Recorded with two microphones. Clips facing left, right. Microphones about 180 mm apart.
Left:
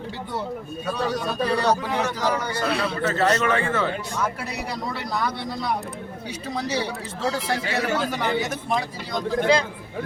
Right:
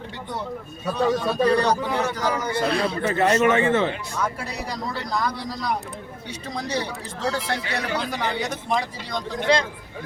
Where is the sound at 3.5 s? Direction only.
25° right (ahead or behind).